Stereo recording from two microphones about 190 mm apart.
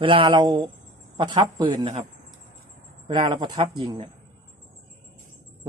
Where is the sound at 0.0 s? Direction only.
25° right (ahead or behind).